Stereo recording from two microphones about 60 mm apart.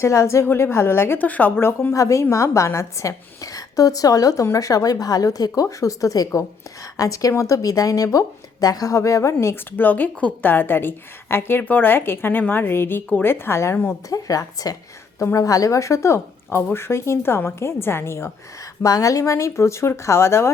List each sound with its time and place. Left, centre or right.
0.0 s a woman's voice: left
0.4 s a woman's voice: left
1.2 s a woman's voice: left
1.9 s a woman's voice: left
5.8 s a woman's voice: left
8.6 s a woman's voice: left
9.7 s a woman's voice: left
14.1 s a woman's voice: left
15.4 s a woman's voice: left
18.8 s a woman's voice: left